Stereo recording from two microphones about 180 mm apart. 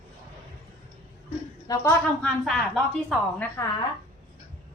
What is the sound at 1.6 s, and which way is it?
Speech, 20° left (ahead or behind).